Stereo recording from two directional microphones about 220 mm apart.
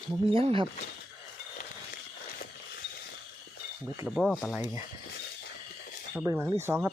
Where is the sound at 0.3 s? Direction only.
25° right (ahead or behind).